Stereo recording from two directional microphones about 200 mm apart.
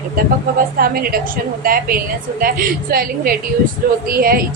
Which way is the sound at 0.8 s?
45° right (ahead or behind).